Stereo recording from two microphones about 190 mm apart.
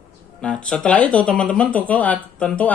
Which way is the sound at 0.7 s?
5° left (ahead or behind).